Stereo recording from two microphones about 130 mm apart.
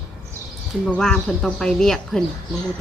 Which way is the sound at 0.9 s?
5° left (ahead or behind).